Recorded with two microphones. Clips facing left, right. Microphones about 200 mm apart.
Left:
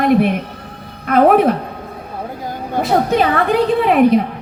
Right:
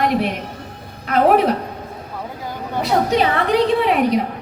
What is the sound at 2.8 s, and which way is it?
A woman's voice, 50° left (ahead or behind).